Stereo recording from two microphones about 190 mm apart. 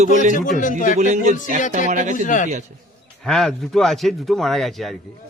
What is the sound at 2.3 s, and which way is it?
Speech, 40° left (ahead or behind).